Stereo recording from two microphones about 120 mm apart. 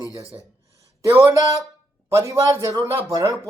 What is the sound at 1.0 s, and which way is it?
Speech, 25° right (ahead or behind).